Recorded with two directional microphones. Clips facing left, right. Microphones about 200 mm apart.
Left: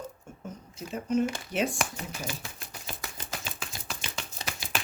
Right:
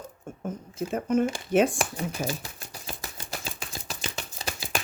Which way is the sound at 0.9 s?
50° right (ahead or behind).